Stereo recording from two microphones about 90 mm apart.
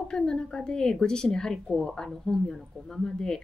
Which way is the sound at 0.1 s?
5° left (ahead or behind).